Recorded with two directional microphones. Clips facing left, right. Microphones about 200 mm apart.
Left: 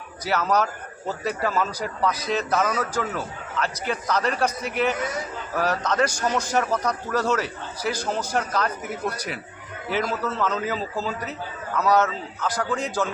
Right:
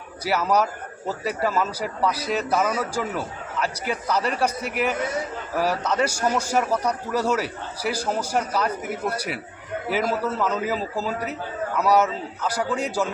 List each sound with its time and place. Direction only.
0.3 s a man's voice: 10° right (ahead or behind)